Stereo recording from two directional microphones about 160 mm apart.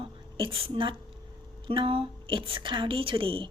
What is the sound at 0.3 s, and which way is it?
A woman's voice, 35° right (ahead or behind).